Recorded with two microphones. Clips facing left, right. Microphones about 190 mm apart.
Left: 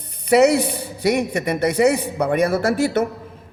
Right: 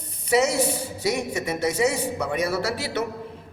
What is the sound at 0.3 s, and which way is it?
A man's voice, 65° left (ahead or behind).